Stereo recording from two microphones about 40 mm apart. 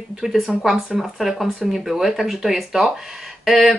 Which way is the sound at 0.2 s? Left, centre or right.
Centre.